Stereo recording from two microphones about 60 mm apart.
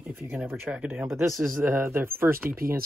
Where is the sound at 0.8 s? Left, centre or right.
Right.